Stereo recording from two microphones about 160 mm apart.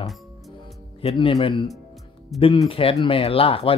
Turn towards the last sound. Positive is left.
turn(degrees=35)  # may be behind; listen again after turning